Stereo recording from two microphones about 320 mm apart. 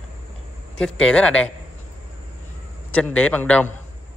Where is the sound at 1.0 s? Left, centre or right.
Centre.